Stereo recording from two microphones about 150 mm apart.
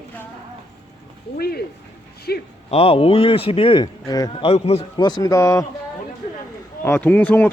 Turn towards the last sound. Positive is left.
turn(degrees=10)  # may be behind; listen again after turning